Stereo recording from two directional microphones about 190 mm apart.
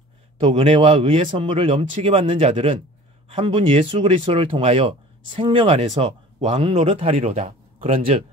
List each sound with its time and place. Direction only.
0.4 s speech: 30° right (ahead or behind)